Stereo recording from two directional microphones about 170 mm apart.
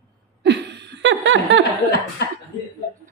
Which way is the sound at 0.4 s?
90° right.